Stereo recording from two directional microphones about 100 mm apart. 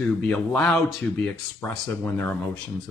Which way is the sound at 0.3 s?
10° left (ahead or behind).